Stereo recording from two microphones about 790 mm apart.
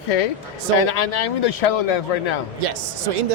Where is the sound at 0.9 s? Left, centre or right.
Left.